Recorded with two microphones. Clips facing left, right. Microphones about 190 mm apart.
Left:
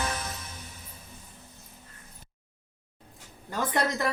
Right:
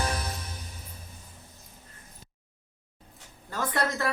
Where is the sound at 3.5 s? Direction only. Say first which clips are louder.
Left 1 dB; 15° left (ahead or behind).